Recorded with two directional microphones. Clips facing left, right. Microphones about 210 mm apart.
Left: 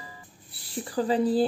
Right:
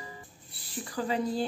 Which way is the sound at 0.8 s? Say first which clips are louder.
Left 6 dB; 35° left (ahead or behind).